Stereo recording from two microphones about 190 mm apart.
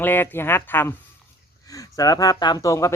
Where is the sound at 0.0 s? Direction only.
10° left (ahead or behind).